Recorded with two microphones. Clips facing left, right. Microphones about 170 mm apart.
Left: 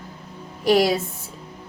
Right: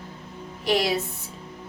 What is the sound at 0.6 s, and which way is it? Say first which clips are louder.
Speech: left 5 dB; 45° left (ahead or behind).